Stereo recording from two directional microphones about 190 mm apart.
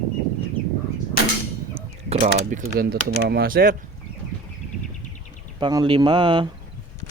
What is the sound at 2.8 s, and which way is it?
Speech, 55° right (ahead or behind).